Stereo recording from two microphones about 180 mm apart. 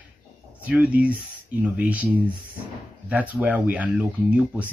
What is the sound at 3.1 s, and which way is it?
Speech, 10° right (ahead or behind).